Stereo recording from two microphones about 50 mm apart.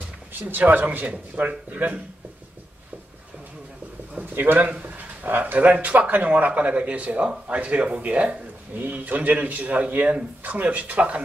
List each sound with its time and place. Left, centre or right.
0.3 s speech: right
4.1 s speech: right
8.7 s speech: right